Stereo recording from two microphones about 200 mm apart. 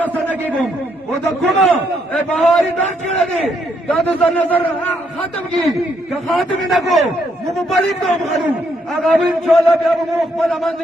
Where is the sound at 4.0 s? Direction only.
5° left (ahead or behind).